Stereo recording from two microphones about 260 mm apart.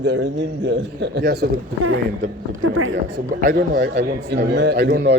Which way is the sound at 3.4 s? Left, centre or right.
Right.